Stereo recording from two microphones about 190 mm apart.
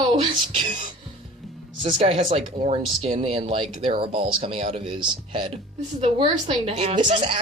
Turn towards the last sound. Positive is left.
turn(degrees=-30)  # may be behind; listen again after turning